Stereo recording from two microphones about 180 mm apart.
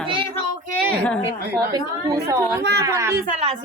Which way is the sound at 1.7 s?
20° right (ahead or behind).